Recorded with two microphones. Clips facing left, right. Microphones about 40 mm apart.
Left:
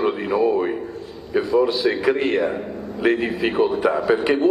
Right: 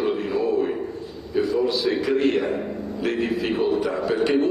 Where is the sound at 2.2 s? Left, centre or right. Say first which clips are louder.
Left 1 dB; centre.